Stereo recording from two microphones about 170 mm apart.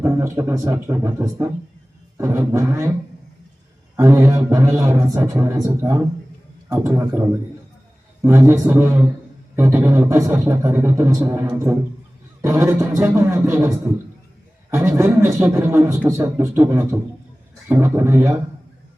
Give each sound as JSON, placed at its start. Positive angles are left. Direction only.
{"t": 0.0, "sound": "a man's voice", "side_deg": -15}
{"t": 3.9, "sound": "a man's voice", "side_deg": -15}